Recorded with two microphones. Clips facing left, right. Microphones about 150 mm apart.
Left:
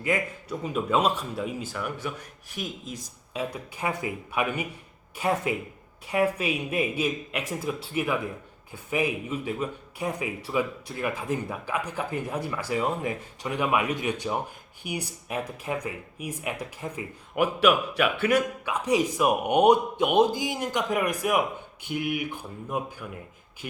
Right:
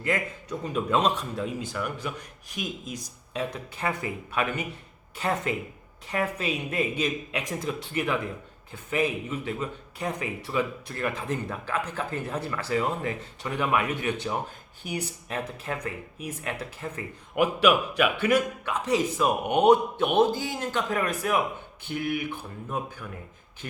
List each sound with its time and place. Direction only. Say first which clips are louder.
0.0 s speech: left 1 dB; 10° left (ahead or behind)
2.6 s a man's voice: right 1 dB; 15° right (ahead or behind)
3.3 s speech: even; 10° left (ahead or behind)
17.4 s a man's voice: even; 10° right (ahead or behind)
18.6 s speech: left 1 dB; 10° left (ahead or behind)